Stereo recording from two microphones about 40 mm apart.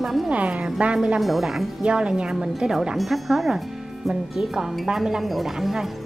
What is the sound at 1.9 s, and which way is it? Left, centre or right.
Speech, right.